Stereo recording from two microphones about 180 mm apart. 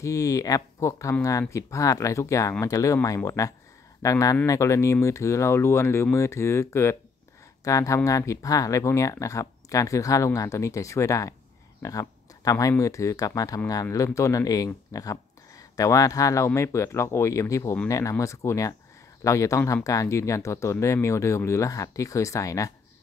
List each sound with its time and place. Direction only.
0.0 s speech: 20° left (ahead or behind)